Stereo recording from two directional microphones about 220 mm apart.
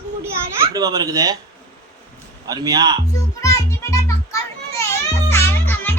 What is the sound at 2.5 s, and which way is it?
Speech, 15° right (ahead or behind).